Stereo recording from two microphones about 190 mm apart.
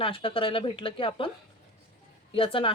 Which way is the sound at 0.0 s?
30° left (ahead or behind).